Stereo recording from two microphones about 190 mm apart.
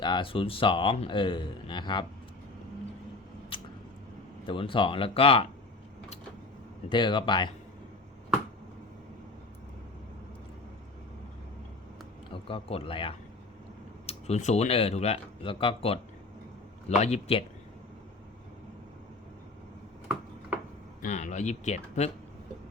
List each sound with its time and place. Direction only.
0.0 s speech: 25° left (ahead or behind)
3.5 s a sound: 25° left (ahead or behind)
4.4 s speech: 25° left (ahead or behind)
6.9 s speech: 25° left (ahead or behind)
12.3 s speech: 30° left (ahead or behind)
21.0 s speech: 40° left (ahead or behind)